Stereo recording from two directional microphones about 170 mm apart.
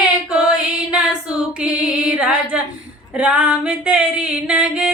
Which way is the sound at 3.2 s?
10° right (ahead or behind).